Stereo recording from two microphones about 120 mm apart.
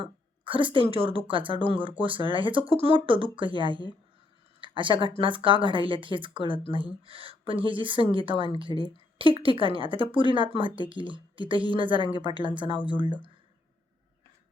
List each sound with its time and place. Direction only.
0.0 s speech: 45° right (ahead or behind)